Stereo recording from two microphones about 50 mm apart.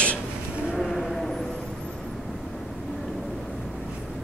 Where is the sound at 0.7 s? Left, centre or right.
Centre.